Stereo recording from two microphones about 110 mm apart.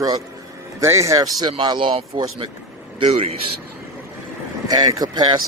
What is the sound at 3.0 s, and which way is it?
Speech, 60° right (ahead or behind).